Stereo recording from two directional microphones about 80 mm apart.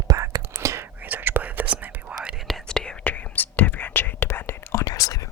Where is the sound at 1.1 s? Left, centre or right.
Right.